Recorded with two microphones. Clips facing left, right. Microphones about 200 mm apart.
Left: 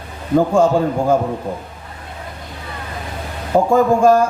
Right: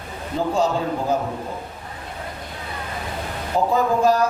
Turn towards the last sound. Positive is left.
turn(degrees=50)  # may be behind; listen again after turning